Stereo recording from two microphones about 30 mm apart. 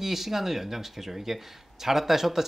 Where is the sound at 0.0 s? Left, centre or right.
Centre.